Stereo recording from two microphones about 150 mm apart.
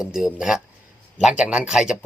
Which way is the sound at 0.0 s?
5° right (ahead or behind).